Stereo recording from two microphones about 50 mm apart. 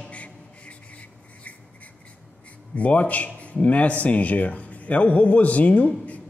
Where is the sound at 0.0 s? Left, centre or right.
Left.